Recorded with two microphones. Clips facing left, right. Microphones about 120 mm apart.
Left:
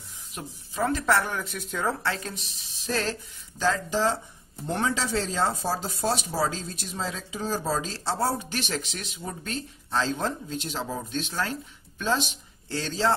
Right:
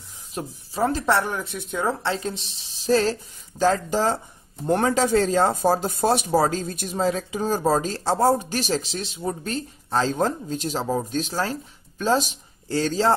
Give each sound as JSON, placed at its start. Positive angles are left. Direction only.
{"t": 0.3, "sound": "speech", "side_deg": -30}
{"t": 1.5, "sound": "speech", "side_deg": -10}
{"t": 1.9, "sound": "speech", "side_deg": -25}